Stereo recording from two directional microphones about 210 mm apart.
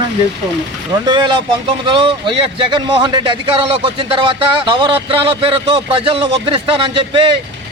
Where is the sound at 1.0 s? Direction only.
20° right (ahead or behind).